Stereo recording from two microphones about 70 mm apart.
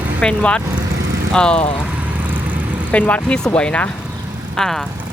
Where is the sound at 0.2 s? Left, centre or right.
Centre.